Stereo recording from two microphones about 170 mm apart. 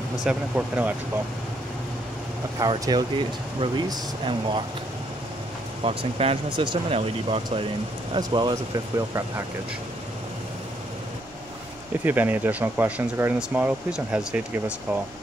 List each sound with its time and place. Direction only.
0.2 s speech: 5° right (ahead or behind)
2.6 s speech: 20° right (ahead or behind)
5.9 s speech: 35° right (ahead or behind)
12.0 s speech: 10° right (ahead or behind)